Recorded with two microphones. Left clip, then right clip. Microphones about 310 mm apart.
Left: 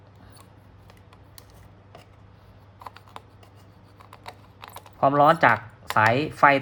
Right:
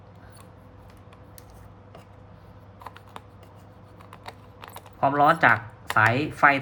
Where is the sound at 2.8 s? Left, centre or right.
Centre.